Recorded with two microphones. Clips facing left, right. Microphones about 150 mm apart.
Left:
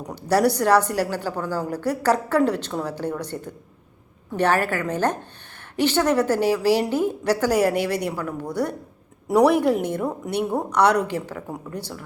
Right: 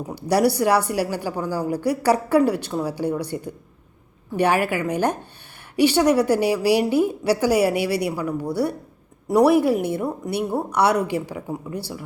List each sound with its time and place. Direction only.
0.1 s a woman's voice: 10° right (ahead or behind)